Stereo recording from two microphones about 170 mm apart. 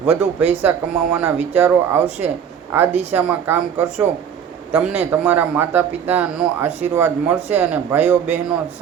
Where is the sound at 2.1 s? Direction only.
40° right (ahead or behind).